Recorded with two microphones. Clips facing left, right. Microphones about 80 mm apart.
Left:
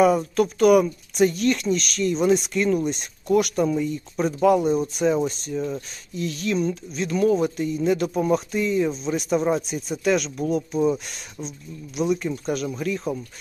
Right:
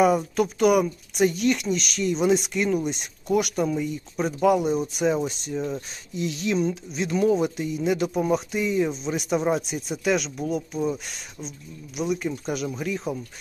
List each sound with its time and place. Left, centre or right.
0.0 s speech: centre